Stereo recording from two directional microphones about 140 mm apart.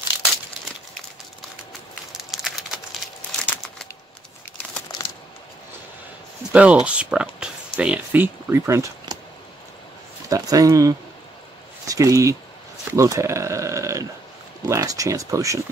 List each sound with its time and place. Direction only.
2.3 s crumpling: centre (ahead or behind)
6.5 s speech: 10° right (ahead or behind)
9.1 s a sound: 30° right (ahead or behind)
10.3 s speech: 25° right (ahead or behind)